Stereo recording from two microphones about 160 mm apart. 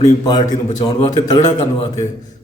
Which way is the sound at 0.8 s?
30° left (ahead or behind).